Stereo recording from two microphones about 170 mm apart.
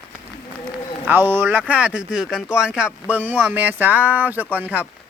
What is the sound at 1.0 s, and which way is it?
Speech, 10° right (ahead or behind).